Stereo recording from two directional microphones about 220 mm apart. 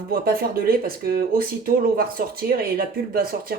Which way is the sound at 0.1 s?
40° right (ahead or behind).